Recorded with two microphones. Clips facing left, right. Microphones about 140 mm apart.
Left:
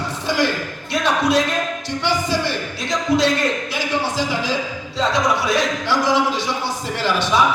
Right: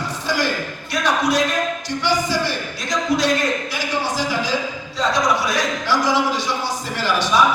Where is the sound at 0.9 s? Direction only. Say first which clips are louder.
Left 1 dB; 25° left (ahead or behind).